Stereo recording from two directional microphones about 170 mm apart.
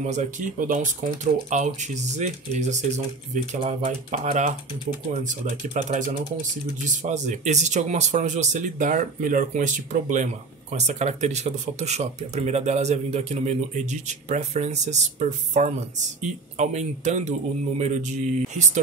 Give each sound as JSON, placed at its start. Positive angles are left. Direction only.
{"t": 0.0, "sound": "speech", "side_deg": -45}